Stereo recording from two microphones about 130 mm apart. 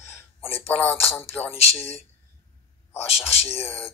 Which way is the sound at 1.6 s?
55° left (ahead or behind).